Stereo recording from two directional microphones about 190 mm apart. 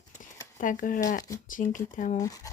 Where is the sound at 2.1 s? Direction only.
20° left (ahead or behind).